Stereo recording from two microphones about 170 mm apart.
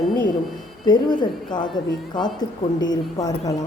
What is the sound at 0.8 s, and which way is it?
A woman's voice, 25° left (ahead or behind).